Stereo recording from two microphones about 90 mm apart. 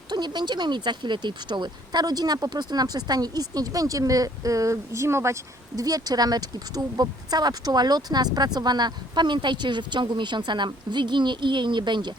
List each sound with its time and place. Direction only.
0.1 s speech: 55° right (ahead or behind)